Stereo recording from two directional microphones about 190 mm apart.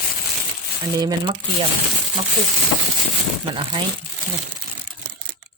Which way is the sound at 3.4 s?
25° right (ahead or behind).